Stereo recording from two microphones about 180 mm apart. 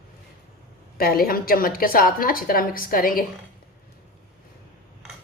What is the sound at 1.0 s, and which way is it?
A woman's voice, 55° left (ahead or behind).